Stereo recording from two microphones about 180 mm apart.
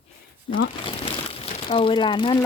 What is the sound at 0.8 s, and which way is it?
Speech, 30° left (ahead or behind).